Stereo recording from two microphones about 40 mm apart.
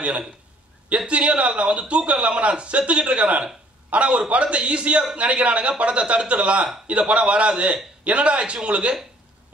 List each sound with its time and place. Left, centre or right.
0.8 s a man's voice: right